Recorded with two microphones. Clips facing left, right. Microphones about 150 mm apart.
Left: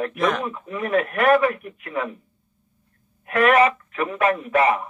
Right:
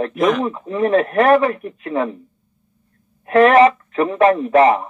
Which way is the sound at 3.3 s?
25° right (ahead or behind).